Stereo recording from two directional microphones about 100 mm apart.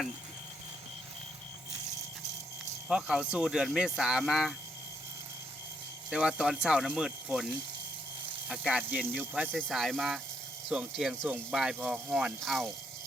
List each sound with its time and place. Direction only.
2.9 s speech: 10° right (ahead or behind)
6.1 s speech: 10° right (ahead or behind)
9.6 s speech: centre (ahead or behind)